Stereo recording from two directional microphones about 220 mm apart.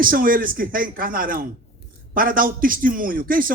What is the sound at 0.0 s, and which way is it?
A man's voice, 40° right (ahead or behind).